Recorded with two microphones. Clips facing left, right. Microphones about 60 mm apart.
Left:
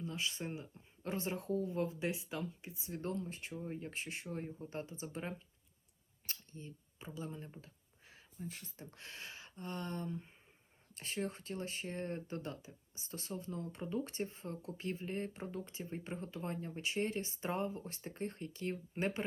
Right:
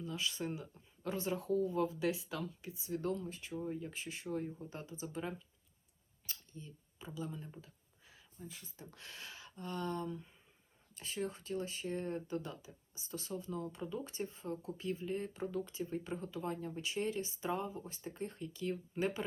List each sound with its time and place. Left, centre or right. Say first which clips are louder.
0.0 s speech: right 1 dB; left